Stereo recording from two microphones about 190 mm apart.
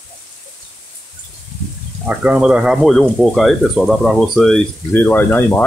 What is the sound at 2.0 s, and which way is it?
Speech, 5° right (ahead or behind).